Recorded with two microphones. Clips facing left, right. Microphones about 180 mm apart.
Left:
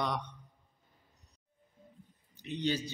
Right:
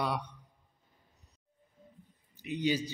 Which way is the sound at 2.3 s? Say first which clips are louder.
Right 2 dB; 10° right (ahead or behind).